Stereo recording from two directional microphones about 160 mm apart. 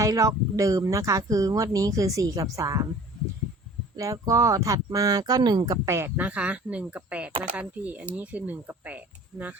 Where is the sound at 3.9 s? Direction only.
20° right (ahead or behind).